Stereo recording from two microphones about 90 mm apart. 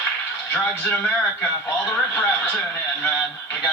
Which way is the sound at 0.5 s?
20° left (ahead or behind).